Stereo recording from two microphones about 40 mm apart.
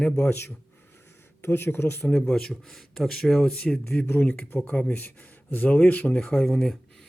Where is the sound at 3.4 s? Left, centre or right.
Left.